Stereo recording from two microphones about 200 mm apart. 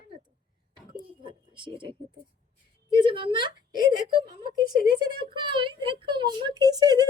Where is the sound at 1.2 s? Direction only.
25° right (ahead or behind).